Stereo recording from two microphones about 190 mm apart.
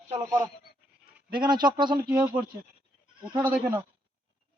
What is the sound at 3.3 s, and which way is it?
Speech, 20° right (ahead or behind).